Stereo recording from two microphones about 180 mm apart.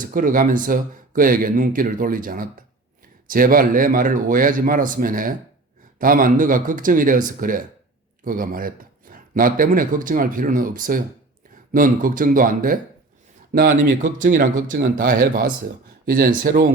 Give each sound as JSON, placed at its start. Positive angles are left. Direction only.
{"t": 0.0, "sound": "speech", "side_deg": -50}